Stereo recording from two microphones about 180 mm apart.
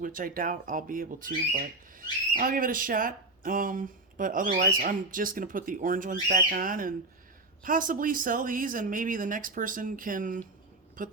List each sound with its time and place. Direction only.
0.0 s speech: 50° right (ahead or behind)